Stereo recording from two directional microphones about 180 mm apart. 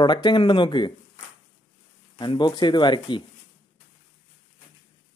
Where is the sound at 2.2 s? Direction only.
25° left (ahead or behind).